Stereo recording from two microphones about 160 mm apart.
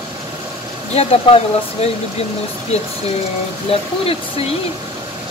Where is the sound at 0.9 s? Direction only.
40° left (ahead or behind).